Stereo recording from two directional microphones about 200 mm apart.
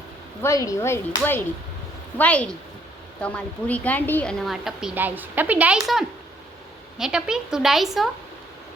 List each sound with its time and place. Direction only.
0.4 s a woman's voice: 15° left (ahead or behind); by 8.1 s centre (ahead or behind)